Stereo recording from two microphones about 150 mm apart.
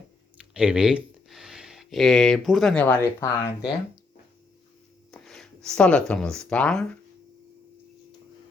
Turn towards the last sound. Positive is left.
turn(degrees=5)  # may be behind; listen again after turning